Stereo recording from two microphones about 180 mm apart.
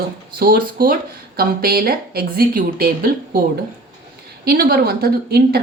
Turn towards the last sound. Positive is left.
turn(degrees=-60)  # may be behind; listen again after turning